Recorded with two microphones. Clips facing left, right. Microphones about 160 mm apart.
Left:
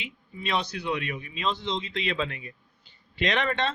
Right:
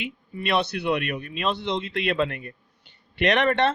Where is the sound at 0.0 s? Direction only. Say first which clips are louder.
Right 6 dB; 65° right (ahead or behind).